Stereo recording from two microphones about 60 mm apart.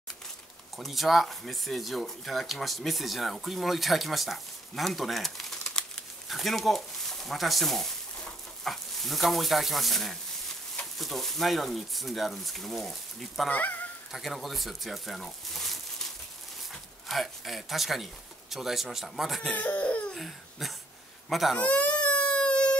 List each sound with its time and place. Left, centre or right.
0.7 s speech: centre
13.5 s speech: left
14.1 s speech: centre
17.1 s speech: centre
19.5 s speech: left
20.2 s a sound: centre
21.3 s speech: centre
21.5 s a sound: left